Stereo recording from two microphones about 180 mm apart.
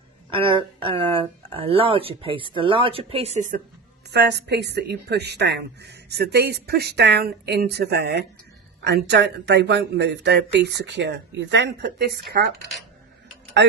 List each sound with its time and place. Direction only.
0.3 s speech: 30° right (ahead or behind)
4.1 s a woman's voice: 70° right (ahead or behind)